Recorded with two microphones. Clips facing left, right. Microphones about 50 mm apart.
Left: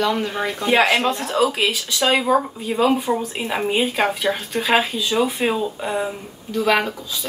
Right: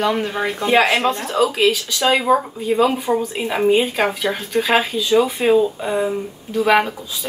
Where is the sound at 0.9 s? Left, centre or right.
Centre.